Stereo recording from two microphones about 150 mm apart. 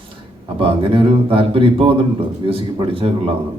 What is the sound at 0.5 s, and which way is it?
Speech, 35° right (ahead or behind).